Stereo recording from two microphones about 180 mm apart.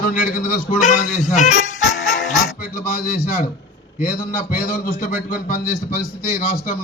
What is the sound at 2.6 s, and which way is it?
A man's voice, 55° left (ahead or behind).